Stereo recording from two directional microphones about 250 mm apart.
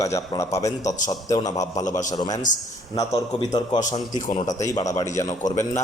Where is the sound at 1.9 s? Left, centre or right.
Left.